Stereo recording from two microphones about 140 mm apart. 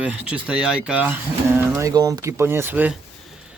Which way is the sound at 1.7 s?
25° right (ahead or behind).